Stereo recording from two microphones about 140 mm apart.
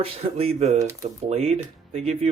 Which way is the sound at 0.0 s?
45° right (ahead or behind).